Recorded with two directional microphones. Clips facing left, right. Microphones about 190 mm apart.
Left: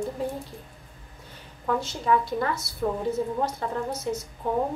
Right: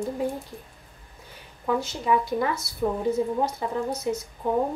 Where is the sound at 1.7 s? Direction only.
10° right (ahead or behind).